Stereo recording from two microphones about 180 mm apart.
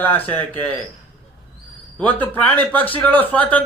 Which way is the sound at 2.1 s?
10° left (ahead or behind).